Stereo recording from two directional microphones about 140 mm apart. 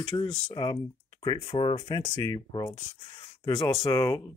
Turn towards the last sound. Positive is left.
turn(degrees=25)  # may be behind; listen again after turning